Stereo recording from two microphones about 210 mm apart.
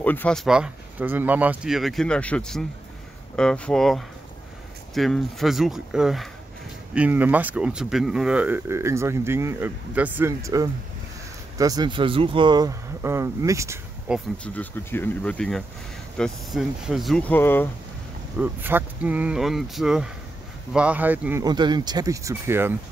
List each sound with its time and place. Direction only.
0.0 s speech: 10° left (ahead or behind); by 13.7 s 15° right (ahead or behind)
14.0 s speech: centre (ahead or behind)
14.5 s speech: 10° left (ahead or behind)
18.4 s speech: 10° right (ahead or behind)